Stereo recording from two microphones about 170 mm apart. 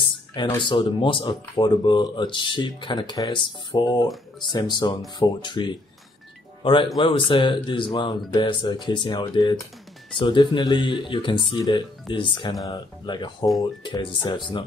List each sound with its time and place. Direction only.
0.3 s speech: 25° left (ahead or behind)